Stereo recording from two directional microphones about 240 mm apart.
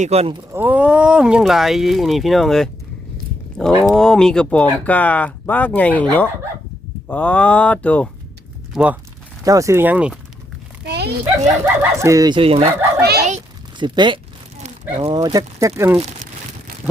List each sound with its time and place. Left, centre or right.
0.0 s speech: right
0.5 s speech: centre
8.7 s speech: centre
10.8 s a sound: right
11.6 s speech: centre
13.0 s a child's voice: right
13.2 s a sound: right
14.6 s speech: right
16.8 s vehicle: centre